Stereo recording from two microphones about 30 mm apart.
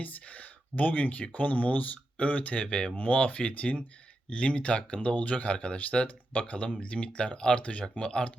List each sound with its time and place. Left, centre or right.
0.0 s speech: left
2.9 s speech: left
6.0 s speech: left
6.4 s speech: left
7.6 s speech: left